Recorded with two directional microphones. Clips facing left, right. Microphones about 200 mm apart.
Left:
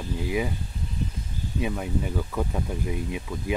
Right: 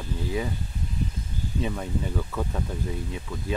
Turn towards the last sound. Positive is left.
turn(degrees=15)  # may be behind; listen again after turning